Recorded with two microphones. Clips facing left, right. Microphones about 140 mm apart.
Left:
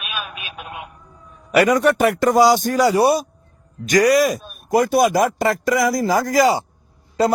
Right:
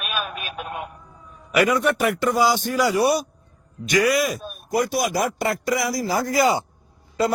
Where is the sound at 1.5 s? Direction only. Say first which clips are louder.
Left 4 dB; 35° left (ahead or behind).